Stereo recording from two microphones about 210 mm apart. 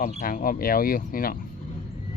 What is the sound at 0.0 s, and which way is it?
Speech, 40° left (ahead or behind).